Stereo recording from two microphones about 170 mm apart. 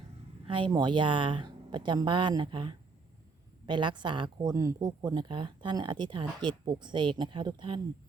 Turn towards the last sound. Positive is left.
turn(degrees=-30)  # may be behind; listen again after turning